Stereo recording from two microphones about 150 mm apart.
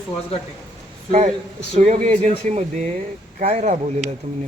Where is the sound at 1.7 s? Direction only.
50° right (ahead or behind).